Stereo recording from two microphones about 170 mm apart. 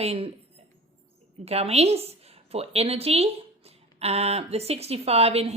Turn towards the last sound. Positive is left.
turn(degrees=-35)  # may be behind; listen again after turning